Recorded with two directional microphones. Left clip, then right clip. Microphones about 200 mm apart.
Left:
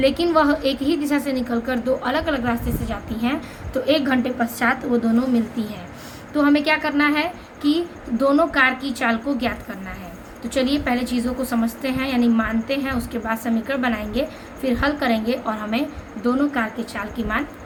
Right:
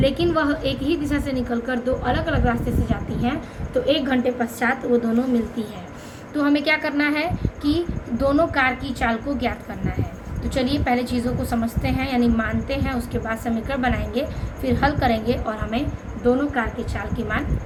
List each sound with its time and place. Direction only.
0.0 s a woman's voice: 35° left (ahead or behind)
6.3 s a woman's voice: 30° left (ahead or behind)
10.5 s a woman's voice: 25° left (ahead or behind)
16.2 s a woman's voice: 40° left (ahead or behind)